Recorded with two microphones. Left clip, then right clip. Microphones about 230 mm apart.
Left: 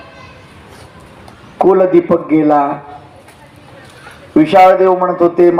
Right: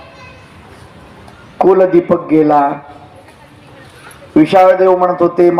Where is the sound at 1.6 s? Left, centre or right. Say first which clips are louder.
Even; right.